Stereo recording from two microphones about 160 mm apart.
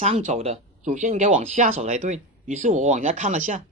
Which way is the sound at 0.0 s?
45° right (ahead or behind).